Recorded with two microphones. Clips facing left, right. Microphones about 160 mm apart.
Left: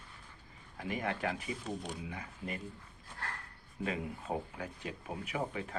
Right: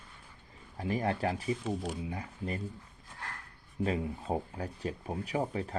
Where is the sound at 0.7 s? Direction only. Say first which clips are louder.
Right 5 dB; 35° right (ahead or behind).